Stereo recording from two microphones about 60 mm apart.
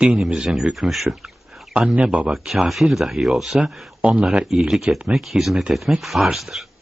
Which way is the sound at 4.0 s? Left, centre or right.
Centre.